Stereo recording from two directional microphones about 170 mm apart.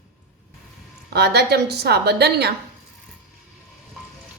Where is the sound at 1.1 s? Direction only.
70° right (ahead or behind).